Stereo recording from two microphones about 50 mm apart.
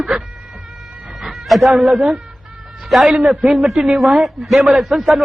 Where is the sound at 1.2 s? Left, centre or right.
Centre.